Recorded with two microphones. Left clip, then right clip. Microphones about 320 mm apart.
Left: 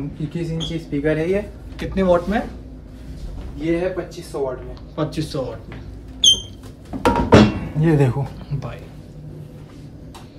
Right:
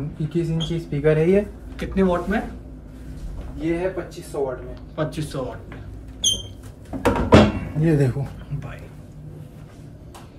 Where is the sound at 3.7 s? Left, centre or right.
Centre.